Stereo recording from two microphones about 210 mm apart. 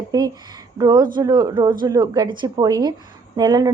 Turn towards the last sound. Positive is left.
turn(degrees=-20)  # may be behind; listen again after turning